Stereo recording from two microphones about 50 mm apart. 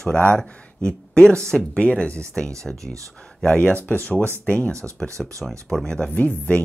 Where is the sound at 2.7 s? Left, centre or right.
Centre.